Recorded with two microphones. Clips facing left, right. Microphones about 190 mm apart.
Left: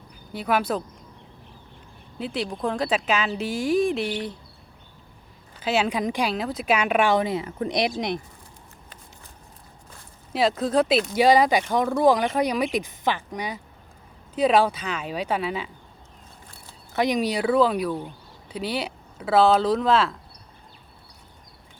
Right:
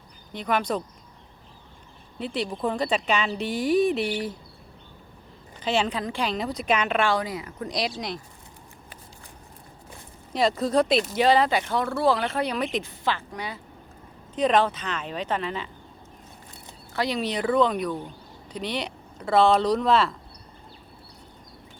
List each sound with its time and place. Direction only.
0.3 s speech: 5° left (ahead or behind)
2.1 s speech: centre (ahead or behind)
5.5 s speech: 5° left (ahead or behind)
6.3 s speech: centre (ahead or behind); by 8.1 s 20° left (ahead or behind)
10.3 s speech: centre (ahead or behind)
11.2 s speech: 10° left (ahead or behind)
16.9 s speech: 20° left (ahead or behind); by 20.1 s centre (ahead or behind)